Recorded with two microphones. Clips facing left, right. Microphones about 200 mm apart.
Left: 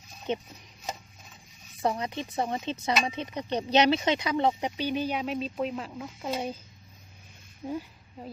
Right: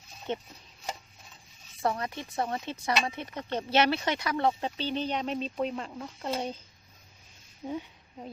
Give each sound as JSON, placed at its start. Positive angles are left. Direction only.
{"t": 0.3, "sound": "speech", "side_deg": 20}
{"t": 1.8, "sound": "speech", "side_deg": 20}
{"t": 7.7, "sound": "speech", "side_deg": 0}